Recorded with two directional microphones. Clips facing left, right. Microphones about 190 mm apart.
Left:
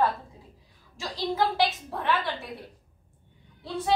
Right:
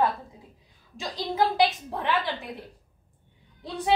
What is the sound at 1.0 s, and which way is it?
A woman's voice, 20° right (ahead or behind).